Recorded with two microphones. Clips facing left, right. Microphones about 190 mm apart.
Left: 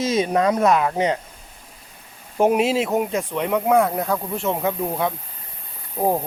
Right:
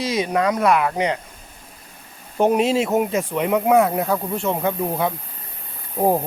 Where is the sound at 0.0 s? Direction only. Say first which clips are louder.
Left 1 dB; 25° left (ahead or behind).